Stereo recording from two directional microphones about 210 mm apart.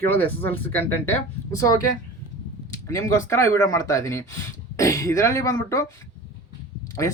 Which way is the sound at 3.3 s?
15° left (ahead or behind).